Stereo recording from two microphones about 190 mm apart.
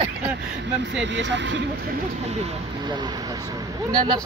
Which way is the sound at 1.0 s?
70° right (ahead or behind).